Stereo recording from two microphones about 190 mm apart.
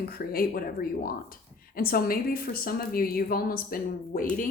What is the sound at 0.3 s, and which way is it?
A woman's voice, 50° left (ahead or behind).